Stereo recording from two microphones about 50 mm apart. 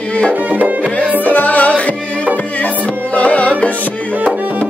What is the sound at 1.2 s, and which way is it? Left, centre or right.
Music, left.